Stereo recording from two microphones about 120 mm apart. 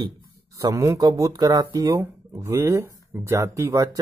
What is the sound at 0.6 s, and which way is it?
A man's voice, 25° right (ahead or behind).